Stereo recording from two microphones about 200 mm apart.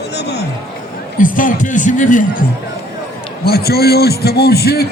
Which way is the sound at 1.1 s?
40° left (ahead or behind).